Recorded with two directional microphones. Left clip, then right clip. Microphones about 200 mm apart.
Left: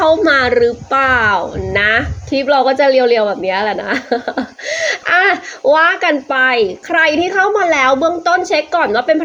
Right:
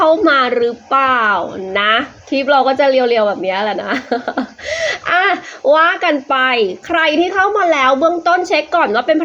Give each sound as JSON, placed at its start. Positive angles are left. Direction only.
{"t": 0.0, "sound": "speech", "side_deg": 10}
{"t": 7.5, "sound": "speech", "side_deg": 20}
{"t": 8.4, "sound": "a woman's voice", "side_deg": 0}